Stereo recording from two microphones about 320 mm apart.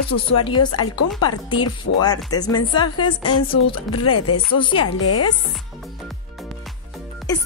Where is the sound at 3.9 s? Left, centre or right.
Left.